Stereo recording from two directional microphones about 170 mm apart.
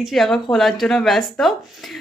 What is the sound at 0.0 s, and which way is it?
Speech, centre (ahead or behind).